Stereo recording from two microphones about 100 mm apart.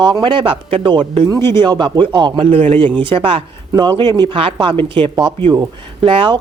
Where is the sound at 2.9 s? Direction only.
60° right (ahead or behind).